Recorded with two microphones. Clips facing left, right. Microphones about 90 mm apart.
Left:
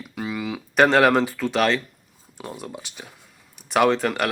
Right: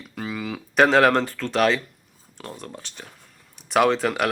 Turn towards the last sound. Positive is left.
turn(degrees=0)  # may be behind; listen again after turning